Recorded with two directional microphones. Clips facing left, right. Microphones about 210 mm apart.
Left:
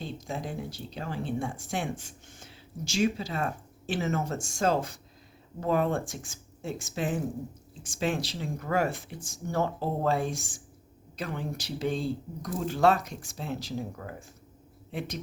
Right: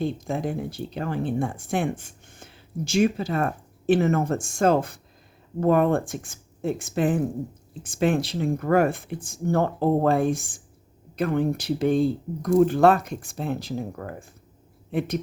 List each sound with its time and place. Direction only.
0.0 s speech: 55° right (ahead or behind)